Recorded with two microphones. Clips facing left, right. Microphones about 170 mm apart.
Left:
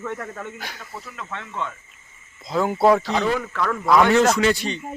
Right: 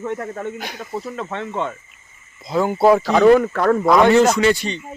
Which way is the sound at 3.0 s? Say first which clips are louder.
Right 11 dB; 50° right (ahead or behind).